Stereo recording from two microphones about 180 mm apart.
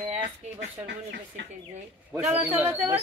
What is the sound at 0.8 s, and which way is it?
Speech, 80° right.